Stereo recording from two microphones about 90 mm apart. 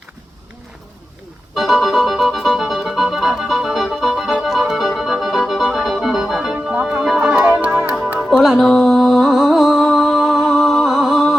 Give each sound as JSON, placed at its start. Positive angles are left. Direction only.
{"t": 1.5, "sound": "music", "side_deg": 0}
{"t": 8.3, "sound": "music", "side_deg": 0}